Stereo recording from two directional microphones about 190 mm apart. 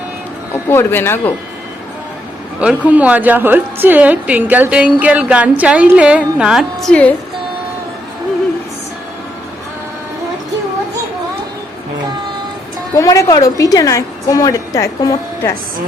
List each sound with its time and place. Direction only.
0.7 s a woman's voice: 10° left (ahead or behind)
2.6 s a woman's voice: 5° right (ahead or behind)
13.0 s a woman's voice: 15° left (ahead or behind)